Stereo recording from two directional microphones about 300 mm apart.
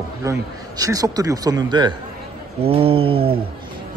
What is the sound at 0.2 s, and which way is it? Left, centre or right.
A man's voice, centre.